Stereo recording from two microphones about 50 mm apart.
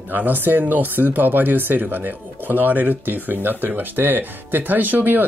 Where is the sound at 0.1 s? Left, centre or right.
Right.